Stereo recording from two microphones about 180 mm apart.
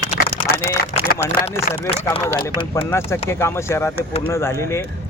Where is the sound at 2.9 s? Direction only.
15° left (ahead or behind).